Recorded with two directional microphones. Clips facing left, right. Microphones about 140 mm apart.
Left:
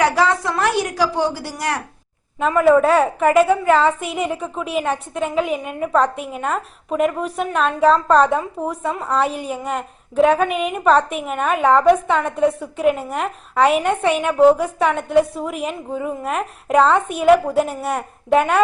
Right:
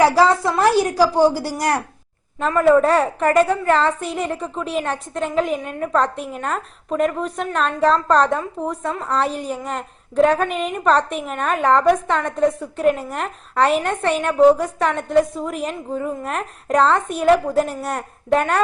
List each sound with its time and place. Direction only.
0.0 s a woman's voice: 35° right (ahead or behind)
2.5 s a woman's voice: 5° left (ahead or behind)